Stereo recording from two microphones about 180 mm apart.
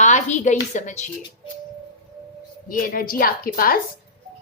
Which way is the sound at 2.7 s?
50° left (ahead or behind).